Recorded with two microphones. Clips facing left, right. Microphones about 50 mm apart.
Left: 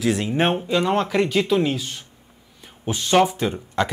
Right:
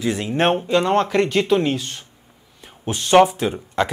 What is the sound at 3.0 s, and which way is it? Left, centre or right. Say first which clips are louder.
Speech: right 4 dB; right.